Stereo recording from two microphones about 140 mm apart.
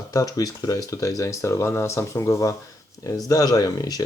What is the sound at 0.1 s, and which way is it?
Speech, 25° left (ahead or behind).